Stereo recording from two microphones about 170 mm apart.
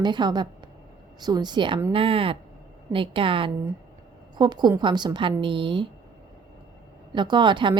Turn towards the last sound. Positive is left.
turn(degrees=-25)  # may be behind; listen again after turning